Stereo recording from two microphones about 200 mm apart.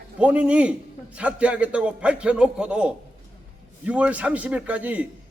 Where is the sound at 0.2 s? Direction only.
5° right (ahead or behind).